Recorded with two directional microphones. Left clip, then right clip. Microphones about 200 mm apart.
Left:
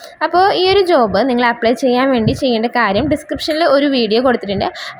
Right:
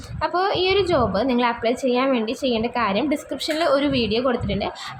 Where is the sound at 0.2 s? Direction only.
25° left (ahead or behind).